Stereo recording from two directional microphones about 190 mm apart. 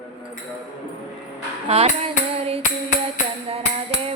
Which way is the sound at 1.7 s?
35° right (ahead or behind).